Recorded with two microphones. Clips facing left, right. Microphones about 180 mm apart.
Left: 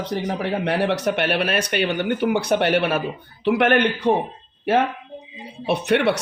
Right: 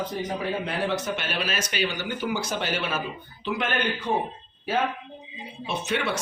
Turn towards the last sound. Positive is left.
turn(degrees=65)  # may be behind; listen again after turning